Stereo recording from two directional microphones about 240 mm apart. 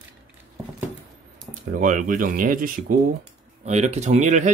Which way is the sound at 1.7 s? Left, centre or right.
Right.